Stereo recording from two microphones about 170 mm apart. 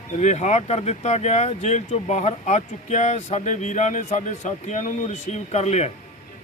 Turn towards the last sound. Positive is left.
turn(degrees=40)  # may be behind; listen again after turning